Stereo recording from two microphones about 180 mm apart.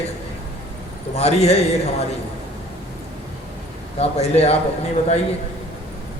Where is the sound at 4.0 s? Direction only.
35° left (ahead or behind).